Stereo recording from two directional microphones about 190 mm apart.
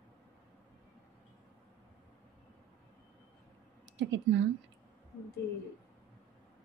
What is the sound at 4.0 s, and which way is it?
Speech, 70° right (ahead or behind).